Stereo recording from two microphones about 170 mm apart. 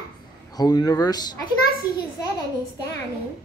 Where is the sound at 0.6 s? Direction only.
25° left (ahead or behind).